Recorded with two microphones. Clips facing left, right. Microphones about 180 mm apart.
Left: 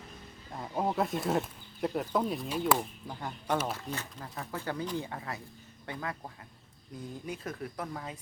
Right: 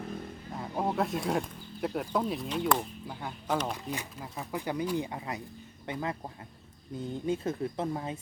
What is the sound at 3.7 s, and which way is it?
Speech, 10° right (ahead or behind).